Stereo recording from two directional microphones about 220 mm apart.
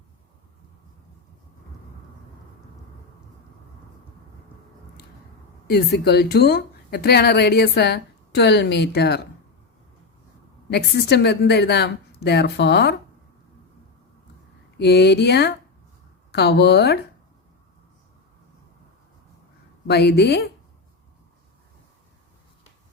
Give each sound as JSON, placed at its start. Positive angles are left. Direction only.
{"t": 5.6, "sound": "speech", "side_deg": 45}
{"t": 10.7, "sound": "speech", "side_deg": 50}
{"t": 14.8, "sound": "speech", "side_deg": 50}
{"t": 19.9, "sound": "speech", "side_deg": 50}